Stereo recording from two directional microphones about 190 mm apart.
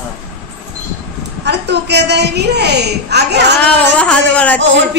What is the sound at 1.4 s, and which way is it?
A woman's voice, 65° right (ahead or behind).